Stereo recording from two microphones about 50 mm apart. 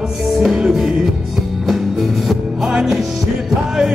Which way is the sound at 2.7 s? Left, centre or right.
Centre.